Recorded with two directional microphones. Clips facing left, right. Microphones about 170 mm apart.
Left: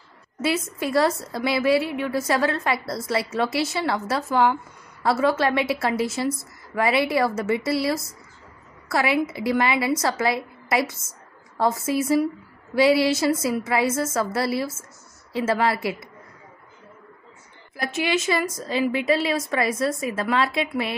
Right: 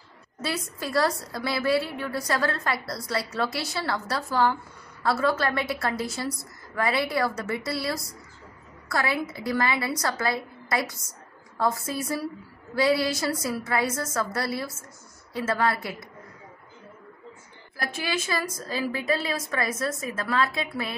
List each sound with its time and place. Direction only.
0.4 s a woman's voice: 20° left (ahead or behind)
18.1 s a woman's voice: 25° left (ahead or behind)
20.2 s a woman's voice: 25° left (ahead or behind)